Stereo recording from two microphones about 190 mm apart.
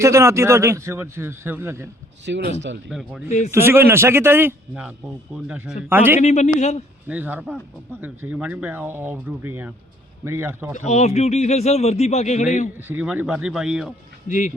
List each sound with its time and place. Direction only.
0.0 s a man's voice: 15° right (ahead or behind)
2.2 s speech: 70° right (ahead or behind)
2.9 s speech: centre (ahead or behind)
3.2 s a man's voice: 35° left (ahead or behind)
3.5 s a man's voice: 10° right (ahead or behind)
6.1 s a man's voice: 35° left (ahead or behind)
7.1 s a man's voice: 10° right (ahead or behind)
10.8 s a man's voice: 35° left (ahead or behind)
12.9 s speech: 10° right (ahead or behind)
14.3 s a man's voice: 40° left (ahead or behind)